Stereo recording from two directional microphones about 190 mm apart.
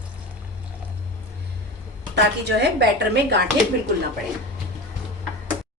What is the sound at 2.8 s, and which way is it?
Speech, 60° right (ahead or behind).